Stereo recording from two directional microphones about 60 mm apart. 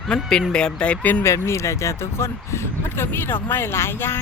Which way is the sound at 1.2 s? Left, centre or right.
Left.